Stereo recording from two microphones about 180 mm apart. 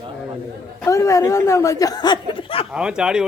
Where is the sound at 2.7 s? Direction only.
5° right (ahead or behind).